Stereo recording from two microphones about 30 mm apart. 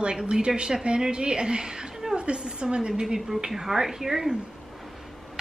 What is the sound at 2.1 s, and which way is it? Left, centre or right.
A woman's voice, right.